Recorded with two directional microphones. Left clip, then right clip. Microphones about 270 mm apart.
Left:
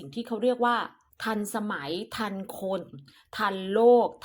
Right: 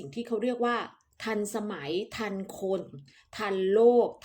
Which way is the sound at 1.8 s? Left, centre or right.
Centre.